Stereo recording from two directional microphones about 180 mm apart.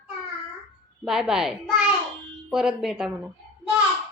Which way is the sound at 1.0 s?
5° right (ahead or behind).